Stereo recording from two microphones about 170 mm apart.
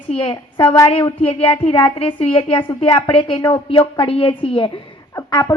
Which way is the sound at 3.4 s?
20° left (ahead or behind).